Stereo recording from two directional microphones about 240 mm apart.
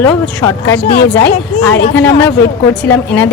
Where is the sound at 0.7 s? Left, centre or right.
Left.